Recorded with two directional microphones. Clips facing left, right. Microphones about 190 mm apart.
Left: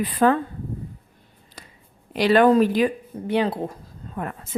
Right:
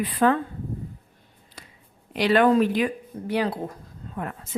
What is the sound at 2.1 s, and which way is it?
Speech, 40° left (ahead or behind).